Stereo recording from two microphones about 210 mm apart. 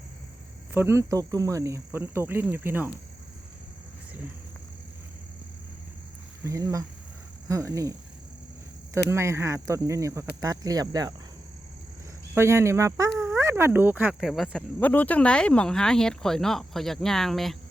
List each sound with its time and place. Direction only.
0.7 s speech: 10° right (ahead or behind)
6.4 s speech: 15° right (ahead or behind)
9.0 s speech: 15° right (ahead or behind)
12.3 s speech: 10° right (ahead or behind)